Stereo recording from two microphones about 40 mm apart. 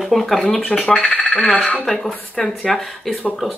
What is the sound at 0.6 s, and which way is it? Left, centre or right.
Speech, centre.